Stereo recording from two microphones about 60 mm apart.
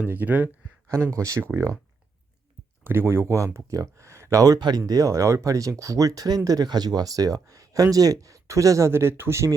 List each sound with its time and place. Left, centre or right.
0.0 s speech: right
0.9 s speech: right
2.8 s speech: right
8.9 s speech: right